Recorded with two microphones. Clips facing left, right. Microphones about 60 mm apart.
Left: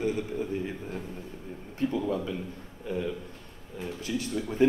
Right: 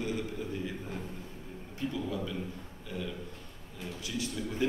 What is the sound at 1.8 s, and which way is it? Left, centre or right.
Speech, left.